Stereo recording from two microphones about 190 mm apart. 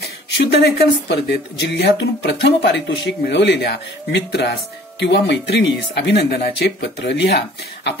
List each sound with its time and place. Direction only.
0.0 s speech: 60° left (ahead or behind)